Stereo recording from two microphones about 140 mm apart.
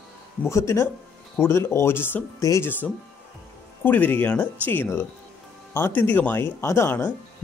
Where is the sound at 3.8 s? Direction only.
15° left (ahead or behind).